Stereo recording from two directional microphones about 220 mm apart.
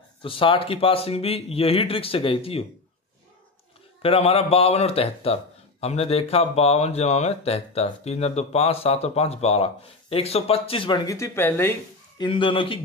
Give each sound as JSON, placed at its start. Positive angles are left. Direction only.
{"t": 0.2, "sound": "speech", "side_deg": 25}
{"t": 4.0, "sound": "speech", "side_deg": 25}
{"t": 12.2, "sound": "speech", "side_deg": 20}